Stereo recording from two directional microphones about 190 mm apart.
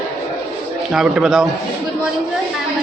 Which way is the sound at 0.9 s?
5° right (ahead or behind).